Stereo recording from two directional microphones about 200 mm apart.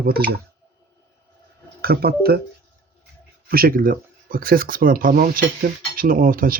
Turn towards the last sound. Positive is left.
turn(degrees=-45)  # may be behind; listen again after turning